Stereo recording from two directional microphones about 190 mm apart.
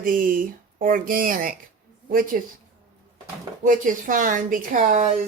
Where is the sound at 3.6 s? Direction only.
45° right (ahead or behind).